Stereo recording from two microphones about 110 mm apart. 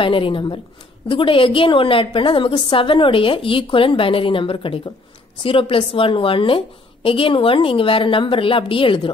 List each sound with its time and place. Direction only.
0.0 s a woman's voice: 50° left (ahead or behind)